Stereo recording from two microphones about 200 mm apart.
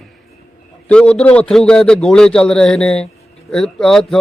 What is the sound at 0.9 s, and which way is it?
Speech, 5° left (ahead or behind).